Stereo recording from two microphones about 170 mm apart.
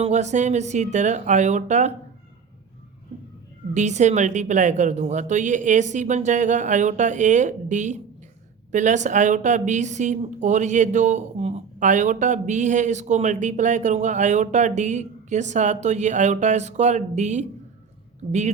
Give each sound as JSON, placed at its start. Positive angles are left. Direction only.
{"t": 0.0, "sound": "speech", "side_deg": -45}
{"t": 3.8, "sound": "speech", "side_deg": -45}